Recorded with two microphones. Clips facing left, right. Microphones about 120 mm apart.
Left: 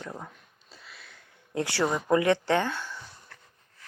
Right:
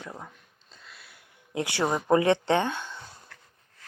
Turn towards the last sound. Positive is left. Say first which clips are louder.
# right 1 dB
turn(degrees=-20)  # may be behind; listen again after turning